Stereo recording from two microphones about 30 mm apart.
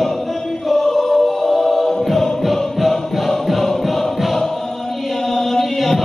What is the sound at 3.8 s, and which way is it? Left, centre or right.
Music, centre.